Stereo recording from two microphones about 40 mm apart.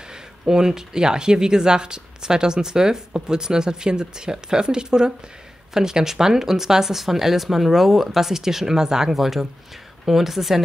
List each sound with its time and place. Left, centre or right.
0.5 s speech: centre